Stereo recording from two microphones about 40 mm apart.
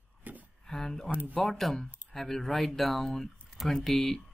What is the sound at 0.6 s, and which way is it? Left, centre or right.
Speech, centre.